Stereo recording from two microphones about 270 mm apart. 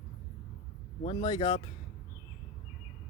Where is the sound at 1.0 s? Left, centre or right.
Centre.